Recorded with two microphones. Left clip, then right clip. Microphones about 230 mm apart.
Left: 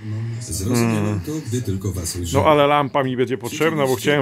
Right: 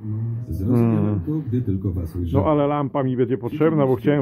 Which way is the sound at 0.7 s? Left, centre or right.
Centre.